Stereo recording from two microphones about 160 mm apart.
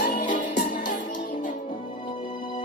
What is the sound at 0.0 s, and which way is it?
Music, 55° left (ahead or behind).